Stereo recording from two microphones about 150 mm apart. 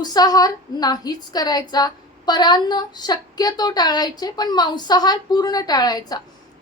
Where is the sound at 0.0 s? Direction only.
25° left (ahead or behind).